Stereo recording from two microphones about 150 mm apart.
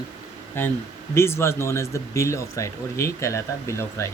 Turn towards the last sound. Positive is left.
turn(degrees=20)  # may be behind; listen again after turning